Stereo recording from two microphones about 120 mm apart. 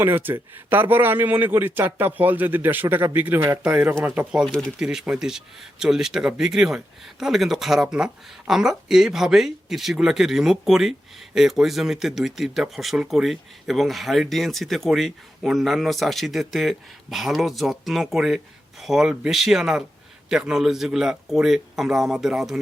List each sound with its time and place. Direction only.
0.0 s speech: 20° right (ahead or behind)